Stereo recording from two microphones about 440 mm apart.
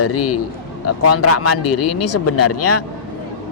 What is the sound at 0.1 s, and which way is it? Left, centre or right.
Speech, left.